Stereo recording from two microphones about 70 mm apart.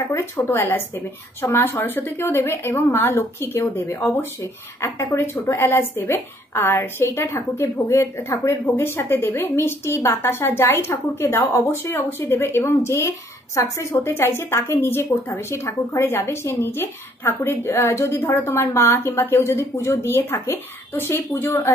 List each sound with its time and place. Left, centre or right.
0.4 s a woman's voice: left